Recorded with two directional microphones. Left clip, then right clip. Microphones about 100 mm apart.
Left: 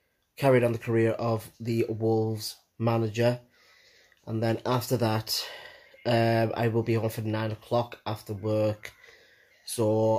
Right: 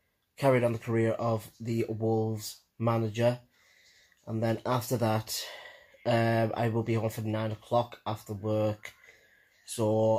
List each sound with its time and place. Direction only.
0.4 s speech: 20° left (ahead or behind)
4.4 s speech: 20° left (ahead or behind)